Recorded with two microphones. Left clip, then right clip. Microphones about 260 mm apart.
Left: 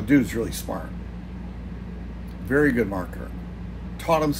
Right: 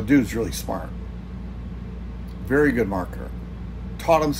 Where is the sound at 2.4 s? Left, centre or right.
Centre.